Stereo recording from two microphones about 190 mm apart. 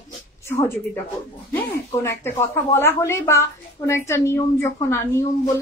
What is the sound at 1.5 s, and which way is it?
Speech, 10° left (ahead or behind).